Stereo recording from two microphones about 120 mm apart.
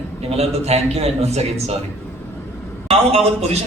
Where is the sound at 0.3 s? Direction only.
60° right (ahead or behind).